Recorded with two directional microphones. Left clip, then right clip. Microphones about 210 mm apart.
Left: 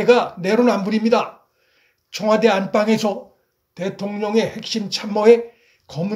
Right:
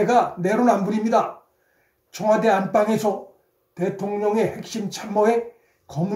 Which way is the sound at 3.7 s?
30° left (ahead or behind).